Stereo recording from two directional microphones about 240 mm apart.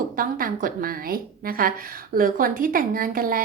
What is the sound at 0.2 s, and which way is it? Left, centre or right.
A woman's voice, right.